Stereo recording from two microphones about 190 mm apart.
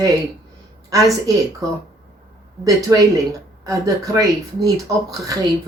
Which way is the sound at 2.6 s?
20° right (ahead or behind).